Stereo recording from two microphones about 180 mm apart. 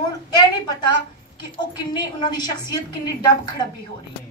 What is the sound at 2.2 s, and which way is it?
Speech, 25° left (ahead or behind).